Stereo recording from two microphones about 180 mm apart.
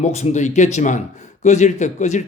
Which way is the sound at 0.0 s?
40° left (ahead or behind).